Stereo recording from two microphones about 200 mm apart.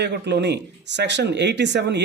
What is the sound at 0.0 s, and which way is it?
Speech, 60° right (ahead or behind).